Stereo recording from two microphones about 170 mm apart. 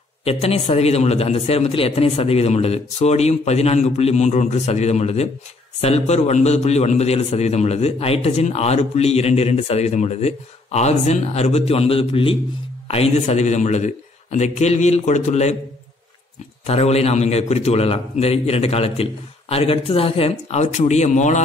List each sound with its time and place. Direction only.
0.2 s a man's voice: 35° left (ahead or behind)
16.6 s a man's voice: 40° left (ahead or behind)